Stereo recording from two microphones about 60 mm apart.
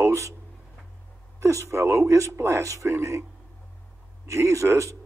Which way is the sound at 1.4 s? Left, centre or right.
Right.